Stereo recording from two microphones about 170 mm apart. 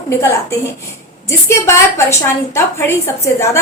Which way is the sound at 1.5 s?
15° left (ahead or behind).